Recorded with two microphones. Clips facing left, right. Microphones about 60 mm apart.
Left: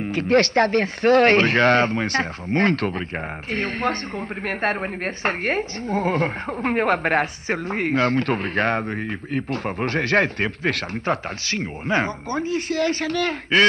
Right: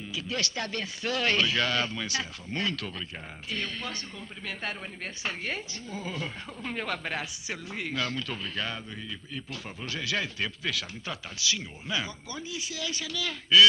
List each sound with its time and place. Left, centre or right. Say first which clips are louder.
0.0 s a woman's voice: left 15 dB; left